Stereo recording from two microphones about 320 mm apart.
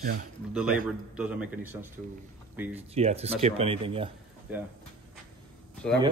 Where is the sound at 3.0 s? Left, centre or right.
Centre.